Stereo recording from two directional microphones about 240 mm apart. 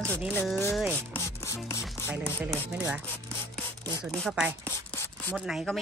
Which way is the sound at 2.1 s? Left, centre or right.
Centre.